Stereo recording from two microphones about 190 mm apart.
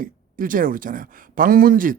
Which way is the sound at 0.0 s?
45° right (ahead or behind).